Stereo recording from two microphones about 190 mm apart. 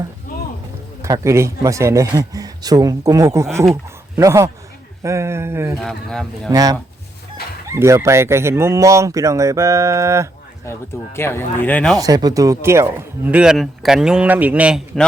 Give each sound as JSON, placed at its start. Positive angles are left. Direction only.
{"t": 1.0, "sound": "speech", "side_deg": -15}
{"t": 5.8, "sound": "speech", "side_deg": 0}
{"t": 6.5, "sound": "speech", "side_deg": -20}
{"t": 10.7, "sound": "speech", "side_deg": 15}
{"t": 11.9, "sound": "speech", "side_deg": -20}